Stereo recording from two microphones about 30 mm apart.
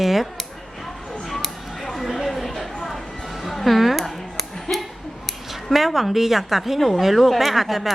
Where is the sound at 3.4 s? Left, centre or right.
Centre.